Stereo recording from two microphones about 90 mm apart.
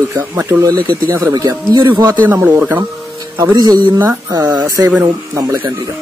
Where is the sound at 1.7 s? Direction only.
50° right (ahead or behind).